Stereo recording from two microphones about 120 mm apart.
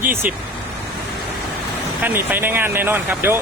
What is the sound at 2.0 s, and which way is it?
Speech, 15° right (ahead or behind).